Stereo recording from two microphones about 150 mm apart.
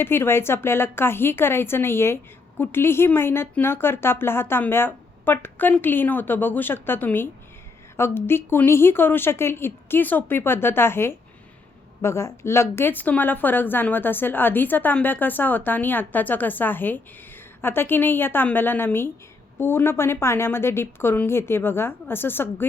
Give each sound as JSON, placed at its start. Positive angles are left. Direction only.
{"t": 0.0, "sound": "a woman's voice", "side_deg": 15}